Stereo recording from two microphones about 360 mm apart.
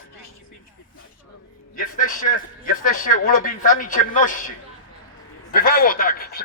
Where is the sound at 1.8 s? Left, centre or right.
Left.